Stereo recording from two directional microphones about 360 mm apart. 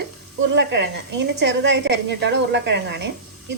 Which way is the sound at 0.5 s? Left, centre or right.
Right.